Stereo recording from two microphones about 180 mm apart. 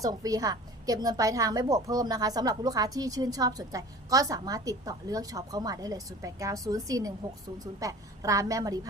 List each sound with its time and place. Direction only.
0.0 s a woman's voice: 20° right (ahead or behind)